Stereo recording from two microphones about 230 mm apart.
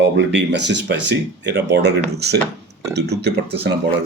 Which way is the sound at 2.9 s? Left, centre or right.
Right.